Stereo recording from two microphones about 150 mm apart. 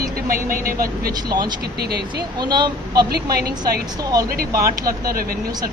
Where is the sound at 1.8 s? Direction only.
90° right.